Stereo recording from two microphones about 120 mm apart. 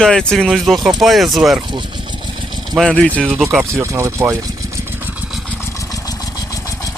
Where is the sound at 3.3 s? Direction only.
5° right (ahead or behind).